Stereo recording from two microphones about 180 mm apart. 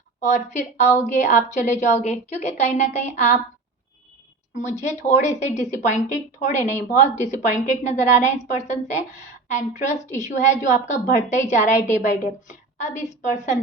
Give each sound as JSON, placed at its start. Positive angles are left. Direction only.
{"t": 0.2, "sound": "a woman's voice", "side_deg": 40}
{"t": 4.5, "sound": "a woman's voice", "side_deg": 40}